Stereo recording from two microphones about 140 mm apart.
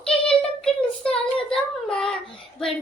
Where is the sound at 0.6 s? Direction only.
5° left (ahead or behind).